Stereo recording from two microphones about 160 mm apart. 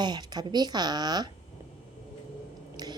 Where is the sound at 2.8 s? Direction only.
25° right (ahead or behind).